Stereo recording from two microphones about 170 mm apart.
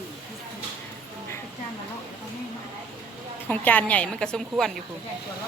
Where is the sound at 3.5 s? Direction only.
10° left (ahead or behind).